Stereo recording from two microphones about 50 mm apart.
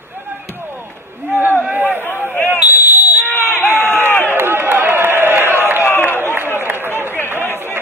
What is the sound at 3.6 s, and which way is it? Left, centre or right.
Crowd, left.